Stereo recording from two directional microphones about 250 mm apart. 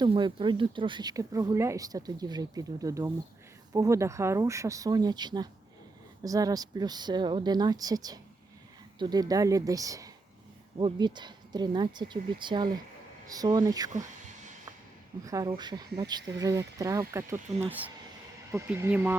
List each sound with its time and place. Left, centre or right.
0.0 s speech: centre
15.2 s speech: centre